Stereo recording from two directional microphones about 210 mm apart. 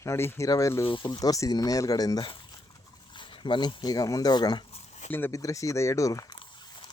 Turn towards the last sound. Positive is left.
turn(degrees=20)  # may be behind; listen again after turning